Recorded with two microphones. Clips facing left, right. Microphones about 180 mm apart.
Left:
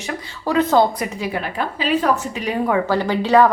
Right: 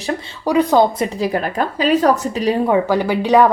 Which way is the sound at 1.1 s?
40° right (ahead or behind).